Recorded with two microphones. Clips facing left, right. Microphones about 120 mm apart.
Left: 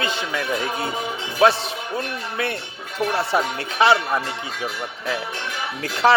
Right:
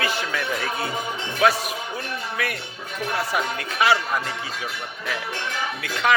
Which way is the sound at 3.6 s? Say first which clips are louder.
Left 3 dB; 30° left (ahead or behind).